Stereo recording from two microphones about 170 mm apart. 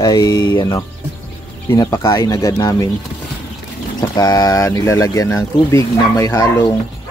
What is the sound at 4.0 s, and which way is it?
Speech, 20° left (ahead or behind).